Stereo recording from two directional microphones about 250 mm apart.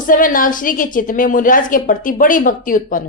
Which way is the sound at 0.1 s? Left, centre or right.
Left.